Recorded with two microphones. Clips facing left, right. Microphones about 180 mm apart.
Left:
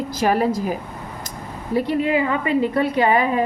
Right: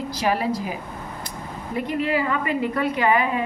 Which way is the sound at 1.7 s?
35° left (ahead or behind).